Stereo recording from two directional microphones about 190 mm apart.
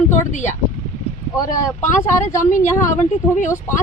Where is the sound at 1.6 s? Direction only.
15° left (ahead or behind).